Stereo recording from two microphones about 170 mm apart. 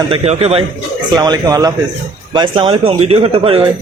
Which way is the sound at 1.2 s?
20° right (ahead or behind).